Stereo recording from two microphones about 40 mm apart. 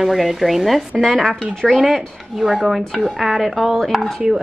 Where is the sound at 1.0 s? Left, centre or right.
Centre.